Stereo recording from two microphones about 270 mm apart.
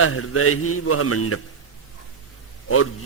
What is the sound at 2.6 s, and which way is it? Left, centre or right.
Speech, left.